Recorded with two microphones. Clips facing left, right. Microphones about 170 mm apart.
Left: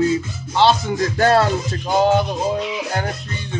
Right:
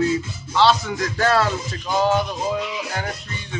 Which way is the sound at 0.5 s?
20° left (ahead or behind).